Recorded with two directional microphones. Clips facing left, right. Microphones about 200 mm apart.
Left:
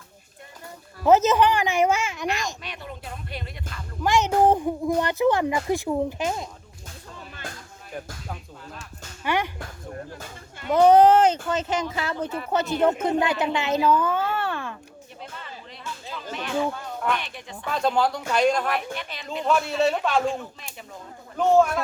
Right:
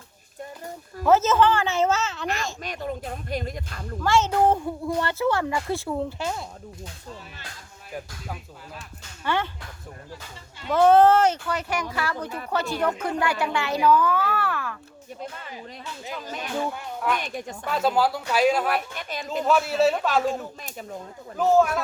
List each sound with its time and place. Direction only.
1.0 s speech: 15° left (ahead or behind)
2.6 s speech: 45° right (ahead or behind)
4.0 s speech: 15° left (ahead or behind)
9.2 s speech: 15° left (ahead or behind)
10.1 s speech: 50° left (ahead or behind)
10.7 s speech: 15° left (ahead or behind)
16.1 s speech: 45° right (ahead or behind)
17.7 s speech: 5° right (ahead or behind)
18.9 s speech: 45° right (ahead or behind)
19.4 s speech: 5° right (ahead or behind)
21.3 s speech: centre (ahead or behind)